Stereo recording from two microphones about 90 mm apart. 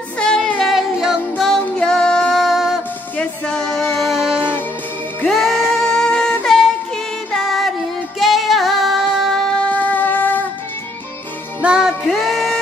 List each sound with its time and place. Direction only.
0.2 s music: 10° left (ahead or behind); by 1.2 s 5° right (ahead or behind)
1.6 s music: 10° left (ahead or behind)
2.3 s music: centre (ahead or behind)
3.2 s music: 10° left (ahead or behind)
8.2 s female singing: centre (ahead or behind)
9.6 s music: 20° left (ahead or behind)
11.6 s music: 10° right (ahead or behind)
12.1 s a sound: centre (ahead or behind)